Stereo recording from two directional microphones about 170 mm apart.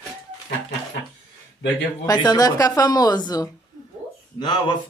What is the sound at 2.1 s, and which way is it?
Speech, 25° left (ahead or behind).